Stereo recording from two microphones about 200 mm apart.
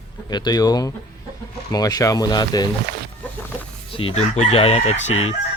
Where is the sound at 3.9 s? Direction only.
25° left (ahead or behind).